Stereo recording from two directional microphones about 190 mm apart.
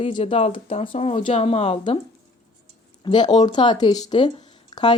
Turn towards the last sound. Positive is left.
turn(degrees=25)  # may be behind; listen again after turning